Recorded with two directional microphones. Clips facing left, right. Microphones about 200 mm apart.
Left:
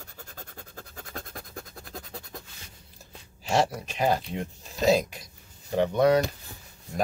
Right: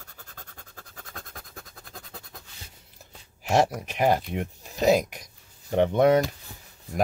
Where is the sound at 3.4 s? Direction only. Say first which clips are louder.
Right 2 dB; 15° right (ahead or behind).